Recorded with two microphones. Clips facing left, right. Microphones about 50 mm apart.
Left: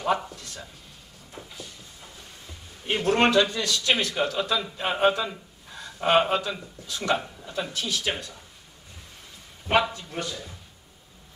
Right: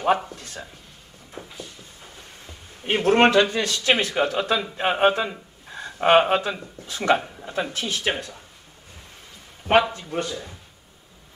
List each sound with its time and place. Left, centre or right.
0.3 s a man's voice: right
1.4 s a sound: right
2.8 s a man's voice: right
5.7 s a sound: right
6.9 s a man's voice: right
9.9 s a man's voice: right